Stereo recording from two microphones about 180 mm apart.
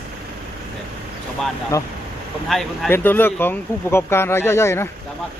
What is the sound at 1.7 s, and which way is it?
Speech, 15° left (ahead or behind).